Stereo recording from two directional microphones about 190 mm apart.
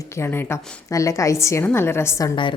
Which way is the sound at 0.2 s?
15° left (ahead or behind).